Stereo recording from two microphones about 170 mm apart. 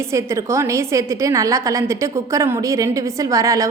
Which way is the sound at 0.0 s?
15° right (ahead or behind).